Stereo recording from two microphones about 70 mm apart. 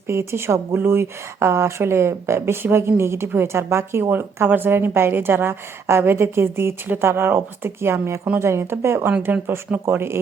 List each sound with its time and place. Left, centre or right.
0.1 s a woman's voice: right
9.2 s speech: right
9.8 s a woman's voice: right